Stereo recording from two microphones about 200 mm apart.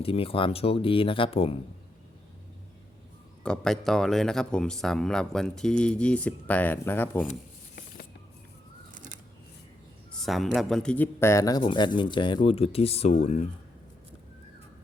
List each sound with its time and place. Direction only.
0.0 s speech: 30° left (ahead or behind)
3.4 s speech: 5° left (ahead or behind)
10.2 s speech: centre (ahead or behind); by 13.4 s 30° left (ahead or behind)